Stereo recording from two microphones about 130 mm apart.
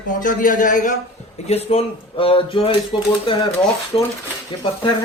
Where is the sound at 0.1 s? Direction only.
90° left.